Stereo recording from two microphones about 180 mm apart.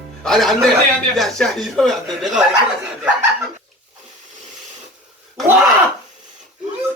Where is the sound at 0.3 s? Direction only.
Centre (ahead or behind).